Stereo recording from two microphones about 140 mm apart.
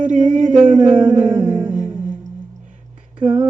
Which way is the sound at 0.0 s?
65° right (ahead or behind).